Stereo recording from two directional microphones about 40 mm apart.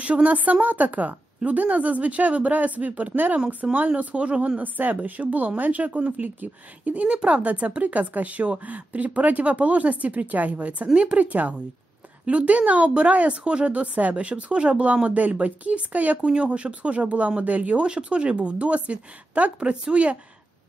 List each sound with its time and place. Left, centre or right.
0.0 s speech: right
4.6 s speech: right
7.1 s speech: right
16.3 s speech: right
19.6 s speech: right